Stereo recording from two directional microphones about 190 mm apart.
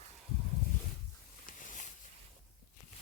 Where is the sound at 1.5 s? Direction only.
45° left (ahead or behind).